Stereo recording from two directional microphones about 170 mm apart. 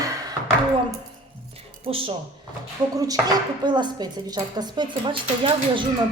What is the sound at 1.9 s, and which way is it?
Speech, 35° right (ahead or behind).